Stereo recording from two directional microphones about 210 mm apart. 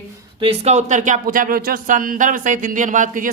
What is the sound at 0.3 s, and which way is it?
Speech, 25° right (ahead or behind).